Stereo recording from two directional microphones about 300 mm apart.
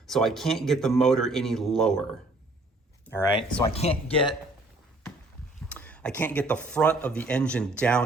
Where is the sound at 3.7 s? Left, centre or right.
Centre.